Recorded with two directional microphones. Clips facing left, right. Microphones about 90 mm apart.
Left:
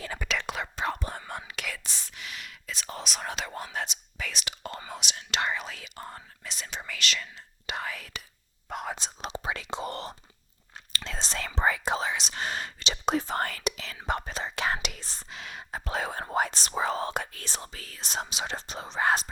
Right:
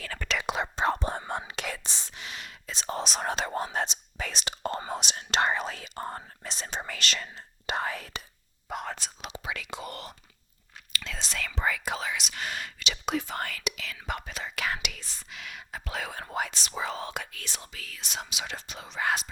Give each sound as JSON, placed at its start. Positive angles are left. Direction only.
{"t": 0.4, "sound": "whispering", "side_deg": -20}
{"t": 8.7, "sound": "whispering", "side_deg": 0}
{"t": 9.0, "sound": "speech", "side_deg": 30}